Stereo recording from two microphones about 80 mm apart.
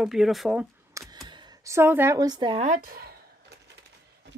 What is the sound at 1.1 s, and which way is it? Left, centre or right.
Camera, right.